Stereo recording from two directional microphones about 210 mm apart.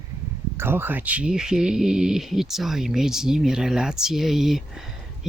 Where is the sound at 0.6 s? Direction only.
10° right (ahead or behind).